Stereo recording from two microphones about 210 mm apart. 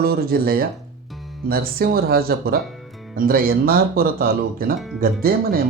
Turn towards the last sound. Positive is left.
turn(degrees=-45)  # may be behind; listen again after turning